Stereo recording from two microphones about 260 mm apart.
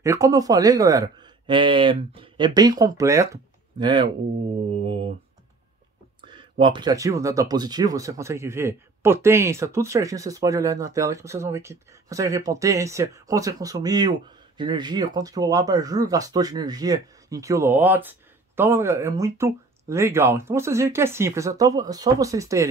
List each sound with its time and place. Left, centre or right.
0.0 s speech: centre
4.6 s mantra: right
6.6 s speech: centre